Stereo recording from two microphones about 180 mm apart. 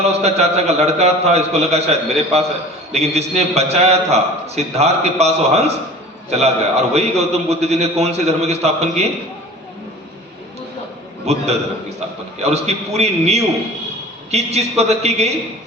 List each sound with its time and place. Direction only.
0.0 s a man's voice: 35° right (ahead or behind)
6.9 s a man's voice: 35° right (ahead or behind)
11.3 s a man's voice: 35° right (ahead or behind)